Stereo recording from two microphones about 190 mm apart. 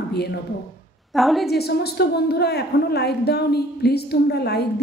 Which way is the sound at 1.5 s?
55° left (ahead or behind).